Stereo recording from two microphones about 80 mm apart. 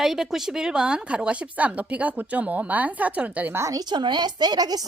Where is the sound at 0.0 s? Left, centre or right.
Centre.